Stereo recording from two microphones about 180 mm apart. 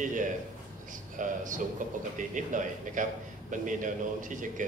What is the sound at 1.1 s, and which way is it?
A man's voice, 45° right (ahead or behind).